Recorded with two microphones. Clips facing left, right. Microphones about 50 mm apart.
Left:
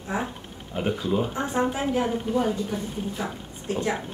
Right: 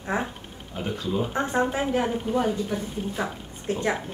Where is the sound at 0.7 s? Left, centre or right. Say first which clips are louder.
Left 3 dB; centre.